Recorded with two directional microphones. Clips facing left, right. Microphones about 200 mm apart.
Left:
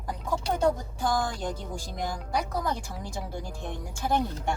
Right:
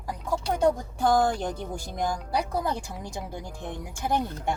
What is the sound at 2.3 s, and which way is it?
Speech, 30° right (ahead or behind).